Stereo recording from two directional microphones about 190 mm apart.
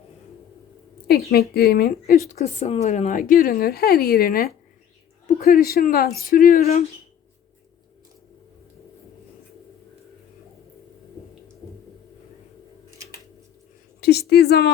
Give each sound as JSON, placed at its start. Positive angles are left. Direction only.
{"t": 1.3, "sound": "speech", "side_deg": 55}
{"t": 6.6, "sound": "speech", "side_deg": 35}
{"t": 14.0, "sound": "a woman's voice", "side_deg": 60}